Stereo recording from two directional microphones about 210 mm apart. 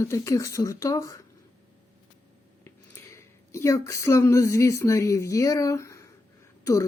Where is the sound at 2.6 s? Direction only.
10° left (ahead or behind).